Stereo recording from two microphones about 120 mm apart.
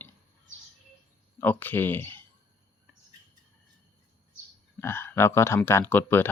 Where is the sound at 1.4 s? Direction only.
15° left (ahead or behind).